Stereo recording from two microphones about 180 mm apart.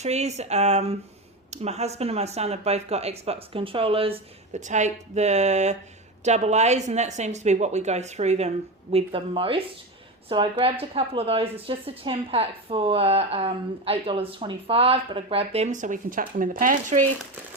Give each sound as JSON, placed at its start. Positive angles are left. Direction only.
{"t": 0.0, "sound": "speech", "side_deg": -35}